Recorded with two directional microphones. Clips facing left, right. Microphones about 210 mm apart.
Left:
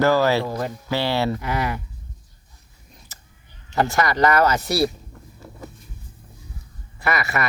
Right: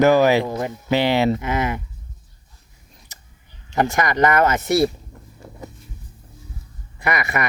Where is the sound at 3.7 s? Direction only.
20° right (ahead or behind).